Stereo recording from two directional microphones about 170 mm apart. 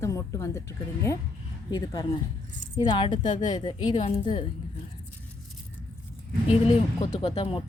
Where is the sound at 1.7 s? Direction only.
20° left (ahead or behind).